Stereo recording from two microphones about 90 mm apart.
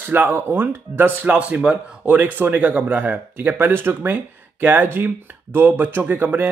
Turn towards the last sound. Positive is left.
turn(degrees=-20)  # may be behind; listen again after turning